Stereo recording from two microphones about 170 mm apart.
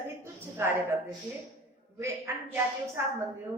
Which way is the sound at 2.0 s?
15° right (ahead or behind).